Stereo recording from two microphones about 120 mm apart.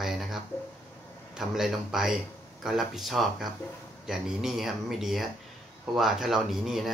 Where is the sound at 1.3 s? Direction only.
5° right (ahead or behind).